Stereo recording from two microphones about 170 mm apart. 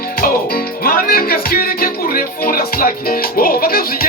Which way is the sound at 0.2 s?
60° left (ahead or behind).